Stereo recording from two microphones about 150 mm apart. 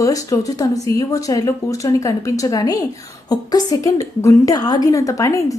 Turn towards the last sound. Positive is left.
turn(degrees=20)  # may be behind; listen again after turning